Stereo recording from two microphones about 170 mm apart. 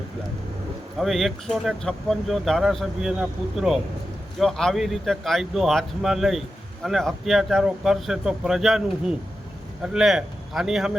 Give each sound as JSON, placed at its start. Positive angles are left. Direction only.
{"t": 0.9, "sound": "speech", "side_deg": 0}